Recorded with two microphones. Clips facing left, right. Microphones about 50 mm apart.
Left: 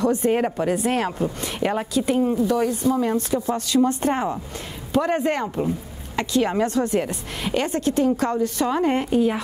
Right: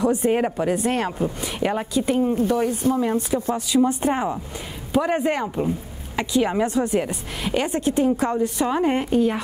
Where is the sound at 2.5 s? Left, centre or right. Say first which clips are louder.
Even; centre.